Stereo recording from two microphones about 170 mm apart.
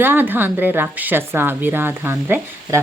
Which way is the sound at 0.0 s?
10° right (ahead or behind).